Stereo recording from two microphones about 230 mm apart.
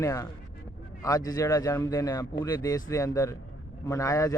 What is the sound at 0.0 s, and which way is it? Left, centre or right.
A man's voice, centre.